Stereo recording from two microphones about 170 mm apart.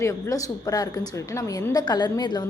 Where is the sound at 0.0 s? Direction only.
20° left (ahead or behind).